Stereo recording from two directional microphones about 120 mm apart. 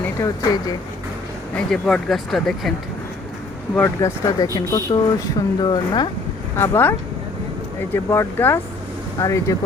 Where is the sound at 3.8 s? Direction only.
25° left (ahead or behind).